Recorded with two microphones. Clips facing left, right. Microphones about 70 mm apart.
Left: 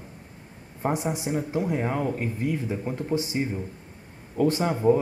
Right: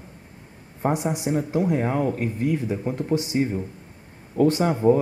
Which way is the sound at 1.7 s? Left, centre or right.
Centre.